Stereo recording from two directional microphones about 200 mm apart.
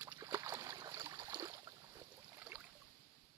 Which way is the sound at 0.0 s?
15° right (ahead or behind).